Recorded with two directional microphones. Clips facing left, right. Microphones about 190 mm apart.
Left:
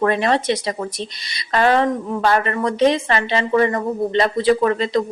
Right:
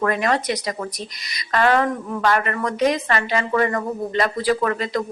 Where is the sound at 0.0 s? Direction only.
30° left (ahead or behind).